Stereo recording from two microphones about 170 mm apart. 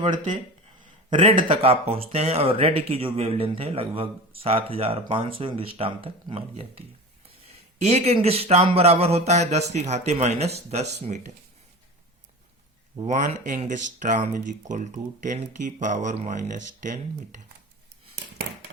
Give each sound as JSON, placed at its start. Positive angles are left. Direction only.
{"t": 1.1, "sound": "speech", "side_deg": -30}
{"t": 13.1, "sound": "speech", "side_deg": -45}